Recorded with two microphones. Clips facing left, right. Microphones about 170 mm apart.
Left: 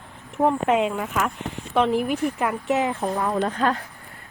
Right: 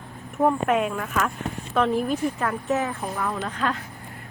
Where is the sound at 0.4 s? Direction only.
20° left (ahead or behind).